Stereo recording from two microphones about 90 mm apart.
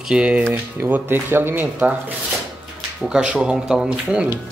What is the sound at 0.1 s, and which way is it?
Speech, 10° right (ahead or behind).